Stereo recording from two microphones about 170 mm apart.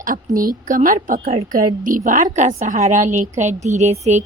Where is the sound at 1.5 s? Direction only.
50° right (ahead or behind).